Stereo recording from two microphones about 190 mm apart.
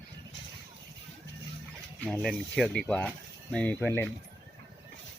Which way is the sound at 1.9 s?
5° left (ahead or behind).